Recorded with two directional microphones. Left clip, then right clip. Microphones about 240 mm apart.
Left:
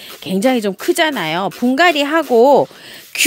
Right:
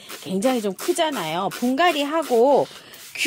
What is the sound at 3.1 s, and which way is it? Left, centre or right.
Whispering, left.